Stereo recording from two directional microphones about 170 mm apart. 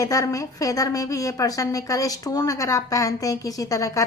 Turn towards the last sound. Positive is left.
turn(degrees=20)  # may be behind; listen again after turning